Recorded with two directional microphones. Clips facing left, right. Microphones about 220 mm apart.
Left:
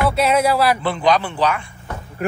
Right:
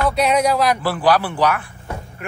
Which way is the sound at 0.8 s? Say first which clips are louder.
Even; 5° right (ahead or behind).